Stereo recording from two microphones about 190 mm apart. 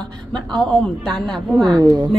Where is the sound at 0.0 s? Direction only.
5° left (ahead or behind).